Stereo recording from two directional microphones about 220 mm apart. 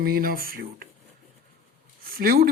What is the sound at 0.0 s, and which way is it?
Speech, 40° right (ahead or behind).